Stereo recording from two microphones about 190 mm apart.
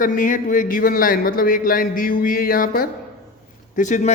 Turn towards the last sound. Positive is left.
turn(degrees=40)  # may be behind; listen again after turning